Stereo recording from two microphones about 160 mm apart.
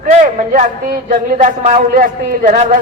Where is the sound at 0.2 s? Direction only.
50° right (ahead or behind).